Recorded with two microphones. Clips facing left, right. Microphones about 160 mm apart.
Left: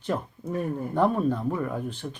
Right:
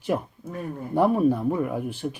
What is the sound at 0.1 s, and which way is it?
Speech, 15° right (ahead or behind).